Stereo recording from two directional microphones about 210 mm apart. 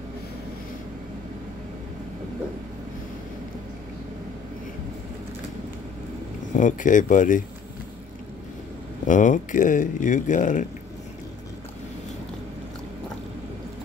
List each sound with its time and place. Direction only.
6.5 s speech: 35° left (ahead or behind)
9.0 s speech: 35° left (ahead or behind)